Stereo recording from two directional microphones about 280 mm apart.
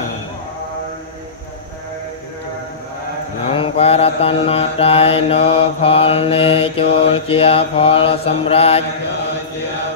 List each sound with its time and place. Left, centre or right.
3.4 s mantra: left